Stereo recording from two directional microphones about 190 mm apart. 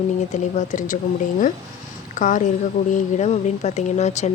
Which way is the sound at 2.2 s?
40° left (ahead or behind).